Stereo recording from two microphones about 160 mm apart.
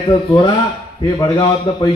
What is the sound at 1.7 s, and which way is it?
Speech, 25° left (ahead or behind).